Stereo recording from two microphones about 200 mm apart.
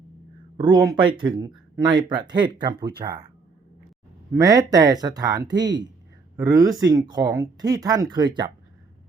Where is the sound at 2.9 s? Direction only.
50° right (ahead or behind).